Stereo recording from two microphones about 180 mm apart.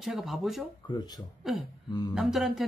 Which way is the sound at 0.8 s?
25° left (ahead or behind).